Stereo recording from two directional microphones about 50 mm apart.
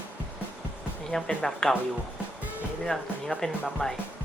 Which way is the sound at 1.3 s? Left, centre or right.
Centre.